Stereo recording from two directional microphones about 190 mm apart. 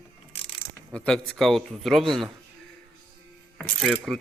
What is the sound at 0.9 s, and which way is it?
A man's voice, 5° left (ahead or behind).